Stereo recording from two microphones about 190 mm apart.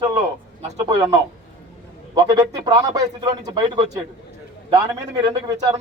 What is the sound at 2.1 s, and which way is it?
Speech, 20° right (ahead or behind).